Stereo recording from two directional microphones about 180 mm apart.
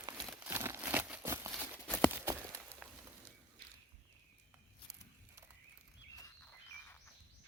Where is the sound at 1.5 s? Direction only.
5° left (ahead or behind).